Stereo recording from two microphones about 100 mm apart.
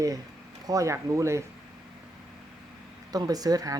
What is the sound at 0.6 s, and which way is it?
Speech, 35° right (ahead or behind).